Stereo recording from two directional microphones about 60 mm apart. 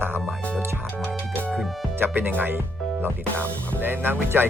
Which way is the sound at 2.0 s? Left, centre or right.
Right.